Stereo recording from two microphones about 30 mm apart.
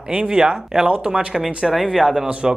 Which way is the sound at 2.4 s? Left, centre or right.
Centre.